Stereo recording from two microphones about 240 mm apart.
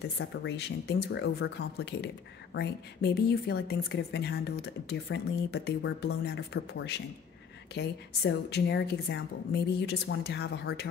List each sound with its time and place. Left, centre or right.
0.2 s a woman's voice: left